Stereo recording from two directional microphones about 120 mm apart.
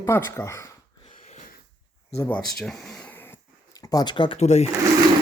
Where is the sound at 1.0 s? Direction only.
80° left.